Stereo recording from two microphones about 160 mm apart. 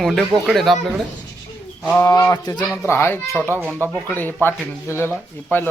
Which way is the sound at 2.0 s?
20° left (ahead or behind).